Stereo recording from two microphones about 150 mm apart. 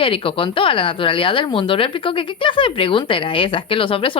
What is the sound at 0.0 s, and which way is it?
Speech, 35° left (ahead or behind).